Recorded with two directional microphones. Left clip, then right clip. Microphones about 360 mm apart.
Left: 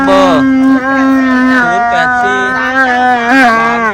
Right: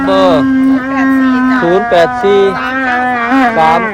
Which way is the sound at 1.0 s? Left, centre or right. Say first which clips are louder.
Left 1 dB; left.